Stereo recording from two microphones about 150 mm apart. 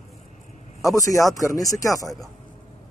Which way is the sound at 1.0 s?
20° left (ahead or behind).